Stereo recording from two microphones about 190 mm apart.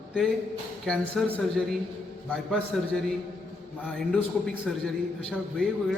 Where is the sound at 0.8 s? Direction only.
5° left (ahead or behind).